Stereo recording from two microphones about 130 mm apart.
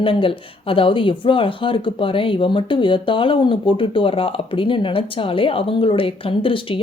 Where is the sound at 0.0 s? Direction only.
45° left (ahead or behind).